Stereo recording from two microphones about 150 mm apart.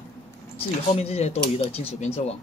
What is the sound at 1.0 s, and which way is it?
A man's voice, 45° left (ahead or behind).